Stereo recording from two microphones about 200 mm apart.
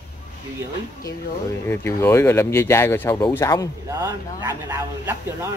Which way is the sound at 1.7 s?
10° left (ahead or behind).